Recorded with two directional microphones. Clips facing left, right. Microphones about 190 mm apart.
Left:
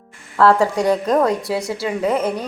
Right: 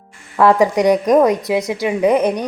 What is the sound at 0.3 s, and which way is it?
A woman's voice, 15° right (ahead or behind).